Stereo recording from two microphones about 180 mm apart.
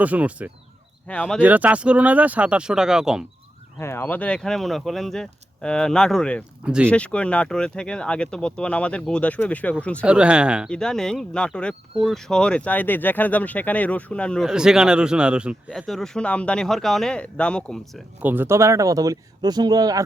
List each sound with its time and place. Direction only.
0.0 s speech: 10° right (ahead or behind)
1.0 s speech: 5° left (ahead or behind)
1.4 s speech: 10° right (ahead or behind)
3.8 s speech: 15° left (ahead or behind); by 6.9 s 5° right (ahead or behind)
6.9 s speech: 5° left (ahead or behind)
10.1 s speech: 5° right (ahead or behind)
18.2 s speech: 10° right (ahead or behind)